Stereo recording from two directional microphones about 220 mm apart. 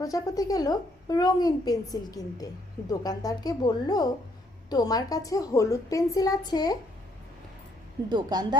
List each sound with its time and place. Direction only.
0.0 s a woman's voice: 15° left (ahead or behind)
8.1 s speech: 20° right (ahead or behind)